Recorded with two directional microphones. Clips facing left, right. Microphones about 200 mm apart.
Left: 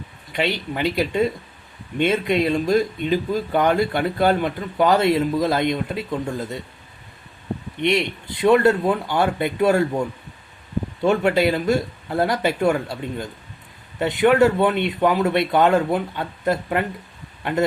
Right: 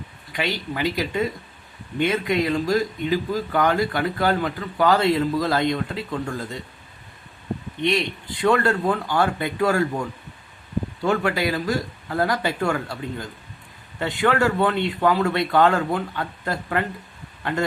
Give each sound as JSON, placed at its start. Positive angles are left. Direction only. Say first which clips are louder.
{"t": 0.3, "sound": "speech", "louder": "left 3 dB", "side_deg": 25}
{"t": 7.8, "sound": "speech", "louder": "left 2 dB", "side_deg": 25}
{"t": 11.0, "sound": "speech", "louder": "left 5 dB", "side_deg": 20}